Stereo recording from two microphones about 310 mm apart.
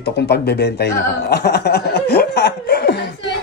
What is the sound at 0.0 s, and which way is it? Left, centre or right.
Speech, left.